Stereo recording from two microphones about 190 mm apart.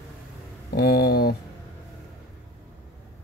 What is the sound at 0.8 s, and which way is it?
Speech, 55° left (ahead or behind).